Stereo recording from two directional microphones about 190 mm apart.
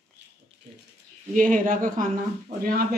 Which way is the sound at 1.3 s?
45° right (ahead or behind).